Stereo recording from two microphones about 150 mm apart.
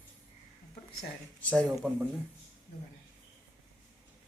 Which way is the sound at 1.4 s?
10° left (ahead or behind).